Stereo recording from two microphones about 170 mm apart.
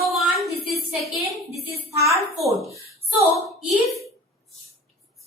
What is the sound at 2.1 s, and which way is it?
Speech, centre (ahead or behind).